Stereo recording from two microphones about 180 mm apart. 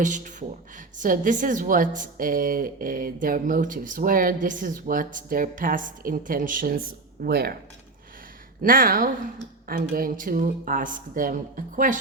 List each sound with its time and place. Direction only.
0.0 s a woman's voice: 45° right (ahead or behind)
8.6 s a woman's voice: 50° right (ahead or behind)